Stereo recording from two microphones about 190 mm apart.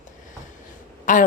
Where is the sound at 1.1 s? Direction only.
40° left (ahead or behind).